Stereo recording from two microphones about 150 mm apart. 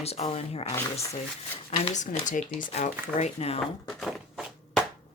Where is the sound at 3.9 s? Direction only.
Centre (ahead or behind).